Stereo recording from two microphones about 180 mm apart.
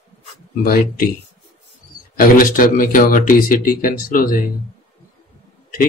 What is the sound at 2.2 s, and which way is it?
A man's voice, 50° left (ahead or behind).